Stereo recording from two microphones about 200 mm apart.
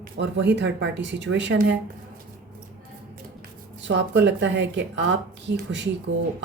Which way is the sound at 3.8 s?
65° right (ahead or behind).